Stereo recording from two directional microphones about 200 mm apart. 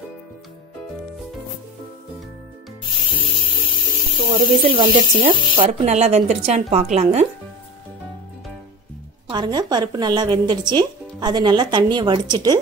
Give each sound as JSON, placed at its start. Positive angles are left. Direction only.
{"t": 2.8, "sound": "spray", "side_deg": 25}
{"t": 4.6, "sound": "speech", "side_deg": -25}
{"t": 9.3, "sound": "speech", "side_deg": -20}